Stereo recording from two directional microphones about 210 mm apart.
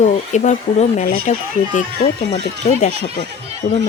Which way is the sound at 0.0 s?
35° left (ahead or behind).